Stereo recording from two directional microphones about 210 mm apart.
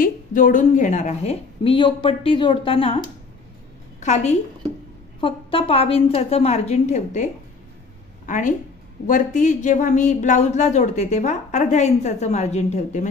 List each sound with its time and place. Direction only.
0.0 s a woman's voice: 40° left (ahead or behind)
4.0 s a woman's voice: 35° left (ahead or behind)
8.3 s a woman's voice: 35° left (ahead or behind)